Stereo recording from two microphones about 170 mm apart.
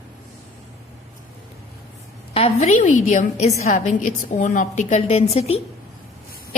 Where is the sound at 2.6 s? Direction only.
45° left (ahead or behind).